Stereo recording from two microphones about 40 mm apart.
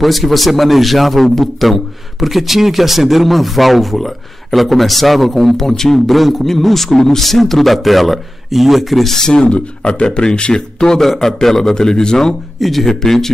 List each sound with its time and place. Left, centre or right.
0.0 s a man's voice: centre
9.1 s speech: centre
11.0 s a man's voice: centre
12.5 s a man's voice: centre